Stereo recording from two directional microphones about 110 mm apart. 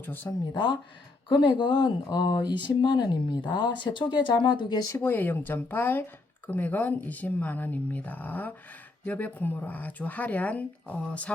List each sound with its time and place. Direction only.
0.0 s speech: 15° left (ahead or behind)
0.5 s speech: 40° left (ahead or behind)
4.9 s speech: 20° left (ahead or behind)